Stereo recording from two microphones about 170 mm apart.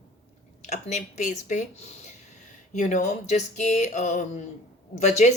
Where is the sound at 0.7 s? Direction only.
45° left (ahead or behind).